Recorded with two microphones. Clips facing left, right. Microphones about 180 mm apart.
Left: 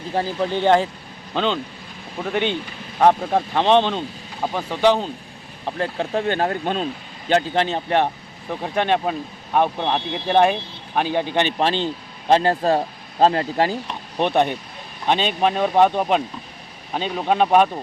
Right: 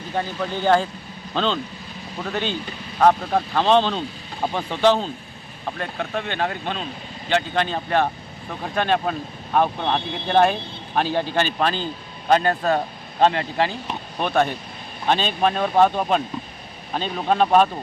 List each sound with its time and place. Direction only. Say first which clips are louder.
0.1 s speech: left 4 dB; 30° left (ahead or behind)
1.3 s speech: left 1 dB; 15° left (ahead or behind)
5.6 s speech: left 4 dB; 30° left (ahead or behind)
7.5 s speech: left 2 dB; 25° left (ahead or behind)
14.2 s speech: left 2 dB; 20° left (ahead or behind)